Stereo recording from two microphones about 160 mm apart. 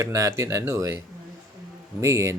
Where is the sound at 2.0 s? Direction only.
15° right (ahead or behind).